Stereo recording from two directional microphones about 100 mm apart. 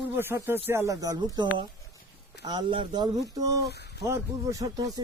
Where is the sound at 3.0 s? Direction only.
35° right (ahead or behind).